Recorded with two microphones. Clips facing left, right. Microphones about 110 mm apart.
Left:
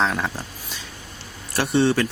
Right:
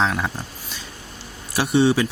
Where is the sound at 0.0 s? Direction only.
Centre (ahead or behind).